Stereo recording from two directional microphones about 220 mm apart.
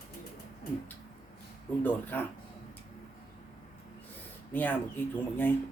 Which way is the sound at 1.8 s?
5° left (ahead or behind).